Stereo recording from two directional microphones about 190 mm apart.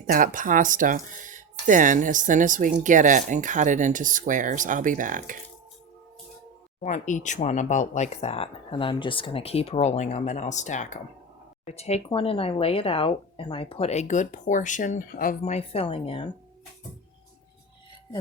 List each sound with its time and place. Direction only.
0.0 s speech: 45° right (ahead or behind)
6.8 s speech: 40° left (ahead or behind)